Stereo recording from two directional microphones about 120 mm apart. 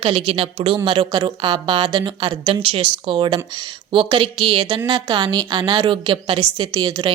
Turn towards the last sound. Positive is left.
turn(degrees=-40)  # may be behind; listen again after turning